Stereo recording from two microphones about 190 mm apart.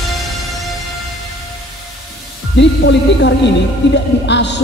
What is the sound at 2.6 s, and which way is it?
A woman's voice, 65° left (ahead or behind).